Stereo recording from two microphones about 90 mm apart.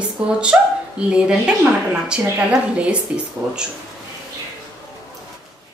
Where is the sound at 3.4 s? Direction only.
30° right (ahead or behind).